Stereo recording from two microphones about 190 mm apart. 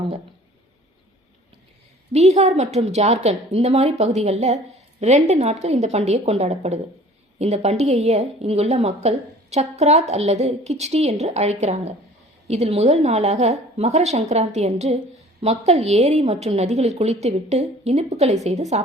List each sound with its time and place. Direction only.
2.1 s a woman's voice: 35° right (ahead or behind)